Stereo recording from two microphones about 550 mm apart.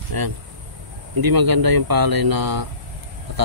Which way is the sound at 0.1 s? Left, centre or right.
Right.